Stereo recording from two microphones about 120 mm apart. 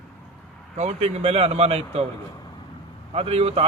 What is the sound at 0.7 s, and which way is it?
A man's voice, 65° right (ahead or behind).